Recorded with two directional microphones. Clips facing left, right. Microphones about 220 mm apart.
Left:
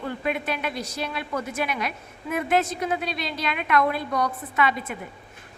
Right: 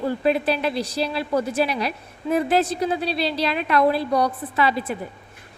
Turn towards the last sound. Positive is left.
turn(degrees=-30)  # may be behind; listen again after turning